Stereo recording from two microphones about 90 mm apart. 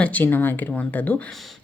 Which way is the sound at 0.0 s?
20° left (ahead or behind).